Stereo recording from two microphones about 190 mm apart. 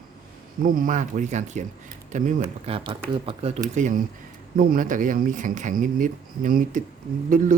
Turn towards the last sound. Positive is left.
turn(degrees=-45)  # may be behind; listen again after turning